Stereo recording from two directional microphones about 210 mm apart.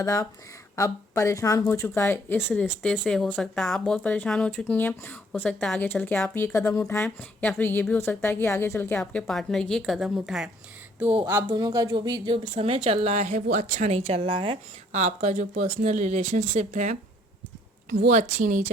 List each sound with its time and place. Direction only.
0.0 s speech: 15° left (ahead or behind); by 10.5 s 5° right (ahead or behind)
11.4 s a woman's voice: 20° right (ahead or behind); by 18.7 s 35° right (ahead or behind)